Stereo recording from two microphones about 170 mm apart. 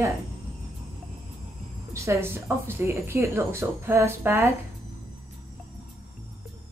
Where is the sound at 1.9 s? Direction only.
15° right (ahead or behind).